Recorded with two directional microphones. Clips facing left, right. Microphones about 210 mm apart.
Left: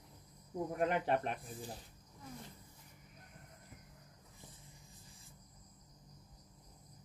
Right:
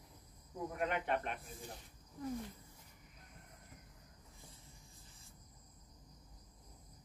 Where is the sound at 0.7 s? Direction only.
35° left (ahead or behind).